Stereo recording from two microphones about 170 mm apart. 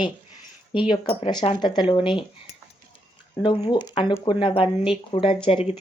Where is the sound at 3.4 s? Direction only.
25° left (ahead or behind).